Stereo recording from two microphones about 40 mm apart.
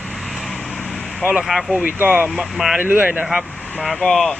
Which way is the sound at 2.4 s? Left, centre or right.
Centre.